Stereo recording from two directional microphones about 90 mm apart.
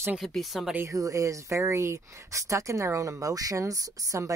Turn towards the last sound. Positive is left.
turn(degrees=-40)  # may be behind; listen again after turning